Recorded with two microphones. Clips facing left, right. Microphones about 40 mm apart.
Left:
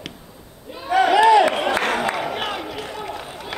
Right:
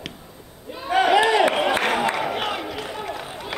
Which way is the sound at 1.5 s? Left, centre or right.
Centre.